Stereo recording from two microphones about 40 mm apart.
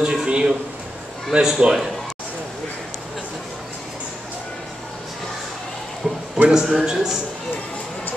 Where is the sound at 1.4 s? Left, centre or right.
Centre.